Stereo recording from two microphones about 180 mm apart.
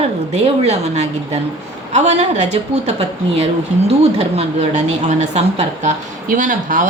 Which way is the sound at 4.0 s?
35° right (ahead or behind).